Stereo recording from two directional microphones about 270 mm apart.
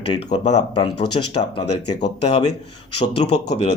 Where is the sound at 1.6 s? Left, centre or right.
Left.